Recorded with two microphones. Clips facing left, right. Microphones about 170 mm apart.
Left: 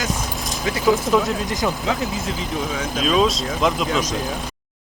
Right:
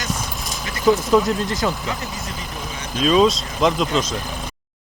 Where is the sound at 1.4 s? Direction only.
15° left (ahead or behind).